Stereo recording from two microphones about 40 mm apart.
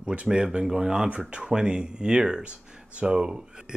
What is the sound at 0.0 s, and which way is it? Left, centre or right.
Speech, right.